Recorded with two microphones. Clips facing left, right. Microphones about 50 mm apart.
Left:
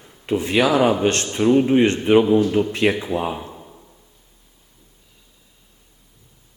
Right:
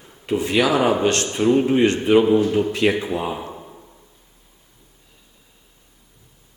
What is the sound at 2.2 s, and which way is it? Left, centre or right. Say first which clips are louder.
Speech: even; right.